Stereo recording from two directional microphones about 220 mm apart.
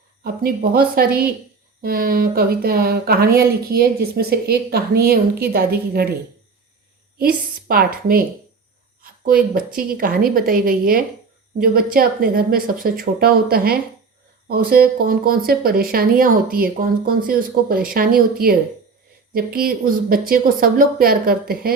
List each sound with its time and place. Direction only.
0.4 s speech: 45° right (ahead or behind)
7.2 s speech: 45° right (ahead or behind)
9.0 s a sound: 40° right (ahead or behind)
9.7 s speech: 40° right (ahead or behind)